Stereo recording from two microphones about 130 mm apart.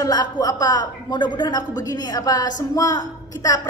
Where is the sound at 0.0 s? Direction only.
30° left (ahead or behind).